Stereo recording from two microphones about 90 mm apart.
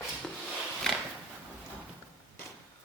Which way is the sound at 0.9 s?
5° left (ahead or behind).